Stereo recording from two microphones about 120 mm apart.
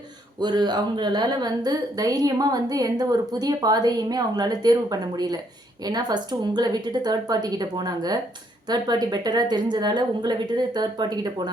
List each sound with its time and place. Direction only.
0.3 s speech: 35° right (ahead or behind)